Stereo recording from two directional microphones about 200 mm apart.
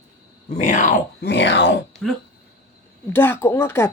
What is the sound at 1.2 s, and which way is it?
Speech, 60° left (ahead or behind).